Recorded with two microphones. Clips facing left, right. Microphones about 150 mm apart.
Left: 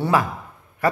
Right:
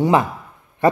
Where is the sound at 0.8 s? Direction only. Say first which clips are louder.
Right 5 dB; 25° right (ahead or behind).